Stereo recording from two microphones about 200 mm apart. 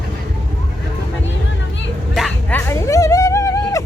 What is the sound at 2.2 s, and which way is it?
Bow-wow, centre (ahead or behind).